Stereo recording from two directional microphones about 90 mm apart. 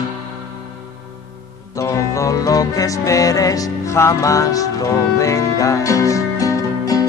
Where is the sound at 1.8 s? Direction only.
35° left (ahead or behind).